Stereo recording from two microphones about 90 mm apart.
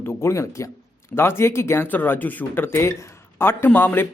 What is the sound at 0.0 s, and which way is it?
Speech, 25° left (ahead or behind).